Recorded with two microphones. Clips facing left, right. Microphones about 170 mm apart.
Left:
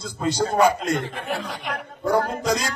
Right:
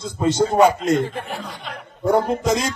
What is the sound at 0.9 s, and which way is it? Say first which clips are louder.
Speech: right 3 dB; 90° left.